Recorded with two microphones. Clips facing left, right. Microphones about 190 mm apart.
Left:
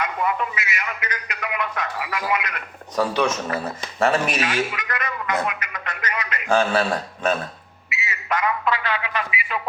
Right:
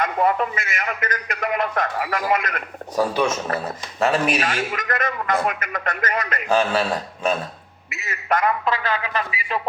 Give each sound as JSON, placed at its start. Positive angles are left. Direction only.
{"t": 0.0, "sound": "a man's voice", "side_deg": -45}
{"t": 2.9, "sound": "speech", "side_deg": -5}
{"t": 4.4, "sound": "a man's voice", "side_deg": -45}
{"t": 6.5, "sound": "a man's voice", "side_deg": -5}
{"t": 7.9, "sound": "telephone", "side_deg": -50}
{"t": 8.6, "sound": "speech", "side_deg": -40}